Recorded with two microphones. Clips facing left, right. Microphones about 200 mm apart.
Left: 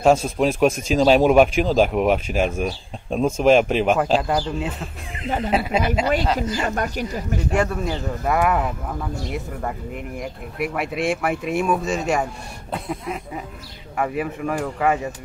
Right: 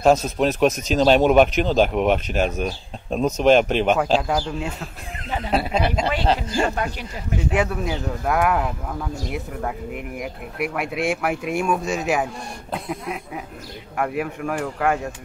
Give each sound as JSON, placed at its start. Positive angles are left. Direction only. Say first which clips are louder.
{"t": 0.0, "sound": "speech", "louder": "even", "side_deg": 0}
{"t": 6.2, "sound": "speech", "louder": "right 1 dB", "side_deg": -30}
{"t": 6.7, "sound": "speech", "louder": "left 3 dB", "side_deg": 45}
{"t": 7.5, "sound": "speech", "louder": "left 1 dB", "side_deg": 0}